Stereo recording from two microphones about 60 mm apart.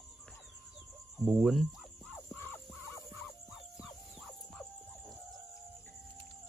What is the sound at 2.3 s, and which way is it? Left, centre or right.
Fowl, left.